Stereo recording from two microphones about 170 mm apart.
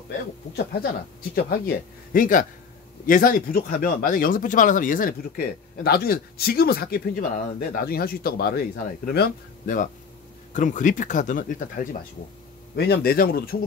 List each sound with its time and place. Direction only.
1.3 s speech: 60° left (ahead or behind)
10.5 s speech: 50° left (ahead or behind)
12.7 s speech: 70° left (ahead or behind)